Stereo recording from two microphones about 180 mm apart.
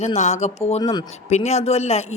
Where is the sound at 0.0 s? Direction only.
40° left (ahead or behind).